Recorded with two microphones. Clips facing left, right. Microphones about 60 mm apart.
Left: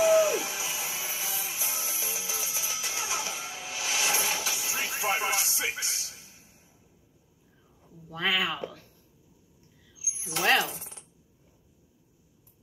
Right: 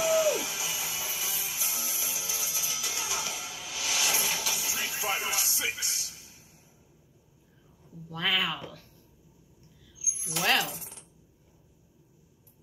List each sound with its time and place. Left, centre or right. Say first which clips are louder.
0.0 s music: left 3 dB; left
8.1 s speech: left 1 dB; centre
10.4 s speech: left 3 dB; left